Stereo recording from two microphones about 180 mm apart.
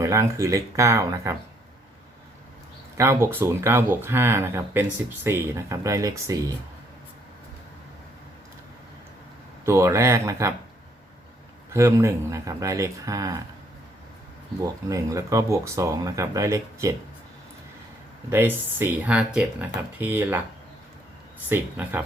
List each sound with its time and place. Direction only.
0.0 s speech: 15° right (ahead or behind)
3.0 s speech: 15° right (ahead or behind)
9.6 s speech: 15° right (ahead or behind)
11.7 s speech: 15° right (ahead or behind)
14.6 s speech: 20° right (ahead or behind)
18.3 s speech: 10° right (ahead or behind)
21.5 s speech: 10° right (ahead or behind)